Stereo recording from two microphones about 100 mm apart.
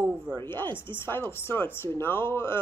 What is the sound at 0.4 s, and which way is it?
Speech, 25° left (ahead or behind).